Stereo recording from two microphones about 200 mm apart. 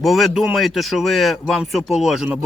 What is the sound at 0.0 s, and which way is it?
Speech, centre (ahead or behind).